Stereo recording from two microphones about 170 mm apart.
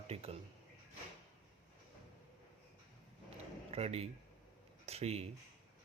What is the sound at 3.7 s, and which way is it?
Speech, 40° right (ahead or behind).